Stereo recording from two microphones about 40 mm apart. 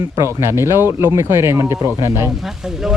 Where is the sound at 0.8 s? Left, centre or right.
Right.